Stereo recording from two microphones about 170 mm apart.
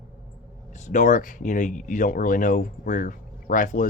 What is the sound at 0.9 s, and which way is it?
Speech, 45° left (ahead or behind).